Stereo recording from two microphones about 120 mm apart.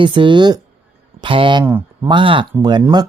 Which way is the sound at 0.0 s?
40° right (ahead or behind).